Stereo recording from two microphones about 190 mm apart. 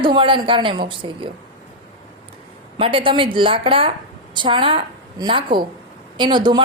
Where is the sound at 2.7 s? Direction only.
30° right (ahead or behind).